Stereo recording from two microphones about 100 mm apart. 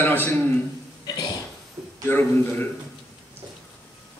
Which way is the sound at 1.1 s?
45° left (ahead or behind).